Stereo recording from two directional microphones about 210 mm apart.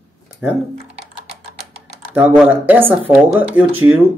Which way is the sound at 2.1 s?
5° right (ahead or behind).